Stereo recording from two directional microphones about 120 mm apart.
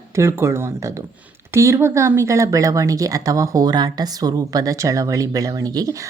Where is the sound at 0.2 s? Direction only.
25° right (ahead or behind).